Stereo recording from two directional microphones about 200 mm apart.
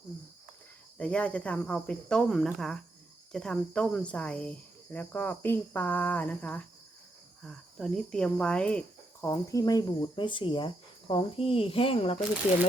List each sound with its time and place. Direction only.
0.9 s speech: 5° left (ahead or behind)
9.2 s speech: 15° left (ahead or behind)